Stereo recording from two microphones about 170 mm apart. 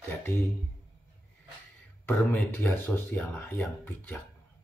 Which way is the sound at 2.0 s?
10° left (ahead or behind).